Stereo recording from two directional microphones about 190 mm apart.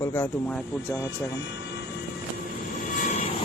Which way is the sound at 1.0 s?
15° left (ahead or behind).